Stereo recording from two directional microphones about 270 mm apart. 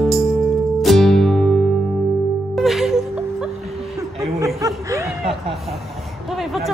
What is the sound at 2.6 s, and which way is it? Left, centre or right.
Music, centre.